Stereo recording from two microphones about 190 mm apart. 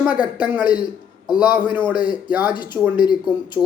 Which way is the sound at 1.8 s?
20° left (ahead or behind).